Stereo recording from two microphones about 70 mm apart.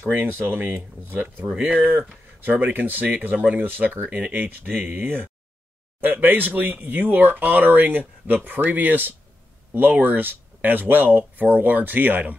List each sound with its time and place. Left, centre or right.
0.0 s speech: right